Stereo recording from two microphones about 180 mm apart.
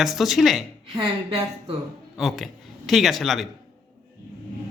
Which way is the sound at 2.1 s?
Centre (ahead or behind).